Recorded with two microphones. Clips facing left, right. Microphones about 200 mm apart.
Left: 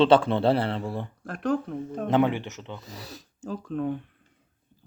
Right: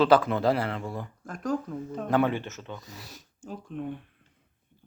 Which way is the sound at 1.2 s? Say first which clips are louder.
Left 3 dB; 65° left (ahead or behind).